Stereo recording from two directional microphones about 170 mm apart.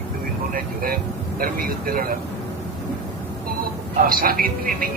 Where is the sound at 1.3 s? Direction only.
60° right (ahead or behind).